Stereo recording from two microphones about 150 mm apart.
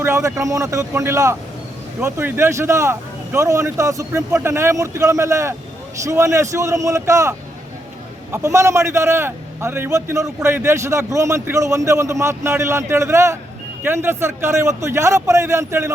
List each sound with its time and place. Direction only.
0.0 s a man's voice: 20° right (ahead or behind)